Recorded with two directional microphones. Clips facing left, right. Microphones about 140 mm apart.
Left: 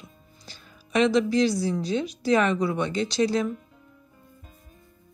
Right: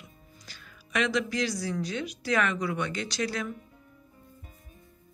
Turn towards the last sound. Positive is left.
turn(degrees=25)  # may be behind; listen again after turning